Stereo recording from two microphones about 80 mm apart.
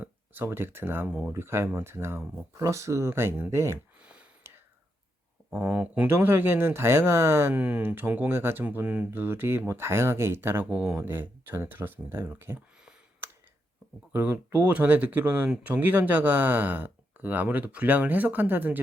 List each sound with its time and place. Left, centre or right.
0.4 s speech: right
4.0 s a sound: centre
5.5 s speech: centre
7.5 s speech: centre
7.8 s speech: right
8.6 s speech: centre
9.0 s speech: right
10.7 s speech: centre
14.1 s speech: right